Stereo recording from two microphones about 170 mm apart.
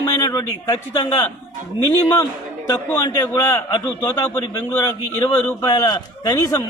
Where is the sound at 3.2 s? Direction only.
20° left (ahead or behind).